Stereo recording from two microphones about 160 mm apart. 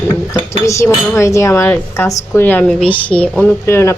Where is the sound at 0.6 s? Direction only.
20° left (ahead or behind).